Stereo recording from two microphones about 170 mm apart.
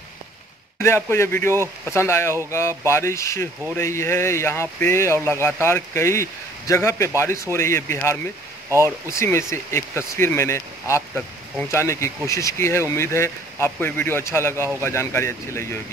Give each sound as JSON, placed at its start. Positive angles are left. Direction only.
{"t": 0.8, "sound": "speech", "side_deg": 15}
{"t": 8.6, "sound": "speech", "side_deg": -15}
{"t": 9.0, "sound": "speech", "side_deg": 15}